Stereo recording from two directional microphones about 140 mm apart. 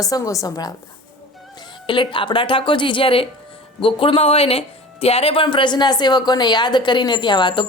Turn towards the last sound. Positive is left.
turn(degrees=35)  # may be behind; listen again after turning